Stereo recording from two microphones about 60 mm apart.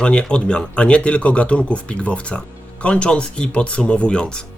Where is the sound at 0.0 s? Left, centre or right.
Centre.